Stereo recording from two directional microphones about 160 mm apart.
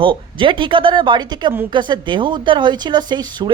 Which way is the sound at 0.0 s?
30° right (ahead or behind).